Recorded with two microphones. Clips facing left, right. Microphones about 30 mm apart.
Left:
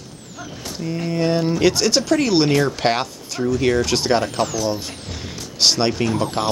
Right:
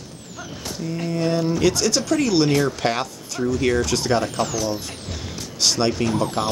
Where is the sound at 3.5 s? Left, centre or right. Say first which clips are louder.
Left 2 dB; centre.